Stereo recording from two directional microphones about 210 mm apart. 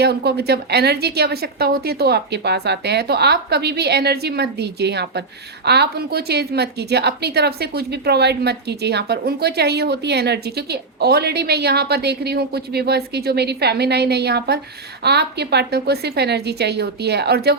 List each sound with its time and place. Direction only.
0.0 s a woman's voice: 50° right (ahead or behind)